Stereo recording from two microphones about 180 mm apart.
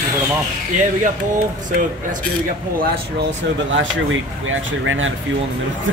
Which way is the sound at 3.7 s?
90° right.